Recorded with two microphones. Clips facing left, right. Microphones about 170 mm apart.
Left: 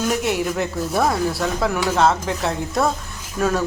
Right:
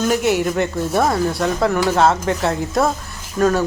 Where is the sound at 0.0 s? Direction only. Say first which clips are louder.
Right 4 dB; centre (ahead or behind).